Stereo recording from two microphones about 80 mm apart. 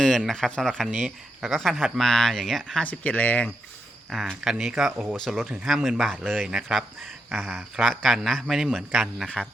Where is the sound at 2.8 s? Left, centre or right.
Centre.